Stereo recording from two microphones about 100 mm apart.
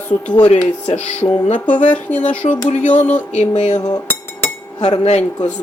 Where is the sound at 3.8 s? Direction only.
40° left (ahead or behind).